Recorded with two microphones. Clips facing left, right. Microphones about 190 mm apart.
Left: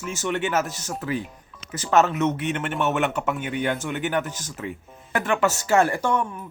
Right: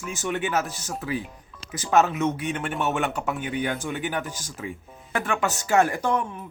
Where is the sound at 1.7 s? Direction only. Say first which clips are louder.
Left 1 dB; 15° right (ahead or behind).